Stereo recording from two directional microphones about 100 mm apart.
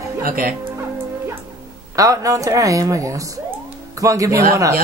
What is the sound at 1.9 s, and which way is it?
Speech, 35° right (ahead or behind).